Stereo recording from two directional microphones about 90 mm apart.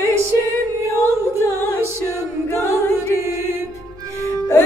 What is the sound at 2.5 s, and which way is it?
A capella, 35° left (ahead or behind).